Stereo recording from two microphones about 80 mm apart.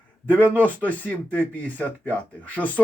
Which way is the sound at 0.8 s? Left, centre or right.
Centre.